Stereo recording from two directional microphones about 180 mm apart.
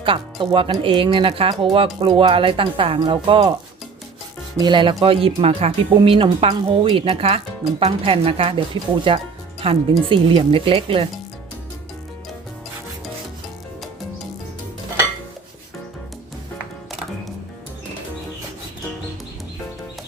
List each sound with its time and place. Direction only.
0.0 s speech: 30° right (ahead or behind)
4.5 s speech: 25° right (ahead or behind)